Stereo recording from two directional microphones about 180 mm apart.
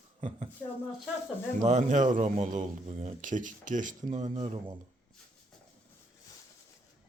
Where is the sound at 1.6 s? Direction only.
40° right (ahead or behind).